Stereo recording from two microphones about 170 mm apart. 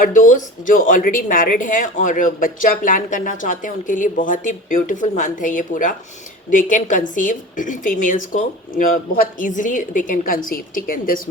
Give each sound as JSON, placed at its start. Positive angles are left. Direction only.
{"t": 0.0, "sound": "speech", "side_deg": 50}